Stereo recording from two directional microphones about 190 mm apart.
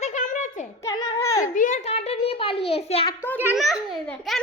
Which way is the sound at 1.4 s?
45° left (ahead or behind).